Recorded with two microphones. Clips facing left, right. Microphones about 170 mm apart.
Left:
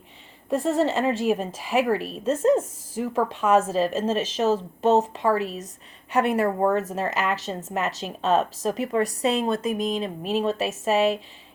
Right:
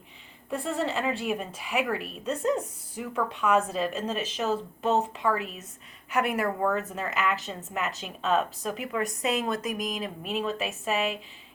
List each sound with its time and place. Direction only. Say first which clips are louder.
0.5 s speech: left 7 dB; 40° left (ahead or behind)